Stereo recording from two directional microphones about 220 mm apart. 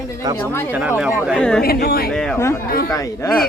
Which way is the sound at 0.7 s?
5° right (ahead or behind).